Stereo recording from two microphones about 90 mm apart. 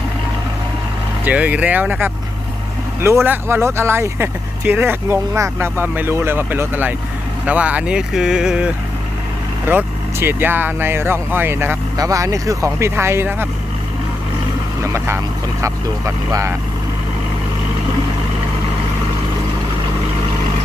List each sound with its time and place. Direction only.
1.2 s speech: 15° right (ahead or behind)
9.6 s speech: 25° right (ahead or behind)
11.9 s speech: 40° right (ahead or behind)
14.8 s speech: 35° right (ahead or behind)